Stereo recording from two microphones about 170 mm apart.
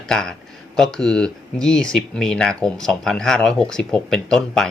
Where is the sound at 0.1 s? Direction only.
5° left (ahead or behind).